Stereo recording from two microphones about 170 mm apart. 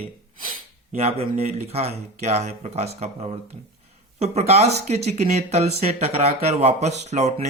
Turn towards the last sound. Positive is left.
turn(degrees=-40)  # may be behind; listen again after turning